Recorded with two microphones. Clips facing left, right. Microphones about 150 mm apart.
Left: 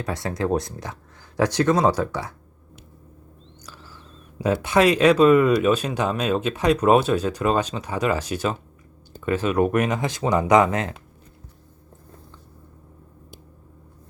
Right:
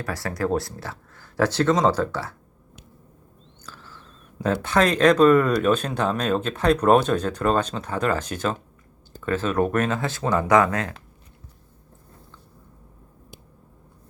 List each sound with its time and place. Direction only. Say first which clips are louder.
0.0 s speech: left 1 dB; 20° left (ahead or behind)
4.4 s speech: left 2 dB; 10° left (ahead or behind)